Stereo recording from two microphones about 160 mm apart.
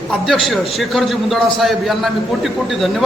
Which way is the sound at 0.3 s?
Centre (ahead or behind).